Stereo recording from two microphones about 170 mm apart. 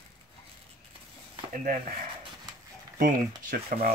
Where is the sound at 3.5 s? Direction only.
60° right (ahead or behind).